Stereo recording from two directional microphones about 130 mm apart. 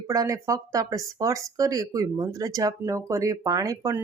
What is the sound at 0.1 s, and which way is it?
Speech, 25° right (ahead or behind).